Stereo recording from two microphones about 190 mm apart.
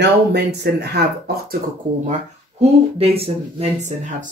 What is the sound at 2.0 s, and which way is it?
Speech, 35° right (ahead or behind).